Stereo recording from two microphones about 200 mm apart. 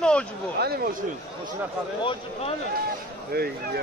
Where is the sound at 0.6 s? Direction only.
50° right (ahead or behind).